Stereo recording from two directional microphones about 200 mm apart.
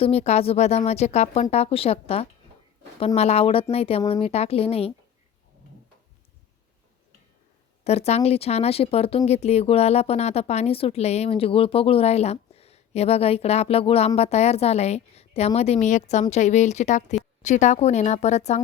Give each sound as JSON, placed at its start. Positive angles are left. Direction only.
{"t": 0.0, "sound": "speech", "side_deg": 30}
{"t": 7.9, "sound": "speech", "side_deg": 30}